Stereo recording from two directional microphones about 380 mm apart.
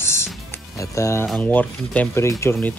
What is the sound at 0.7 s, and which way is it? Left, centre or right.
Speech, centre.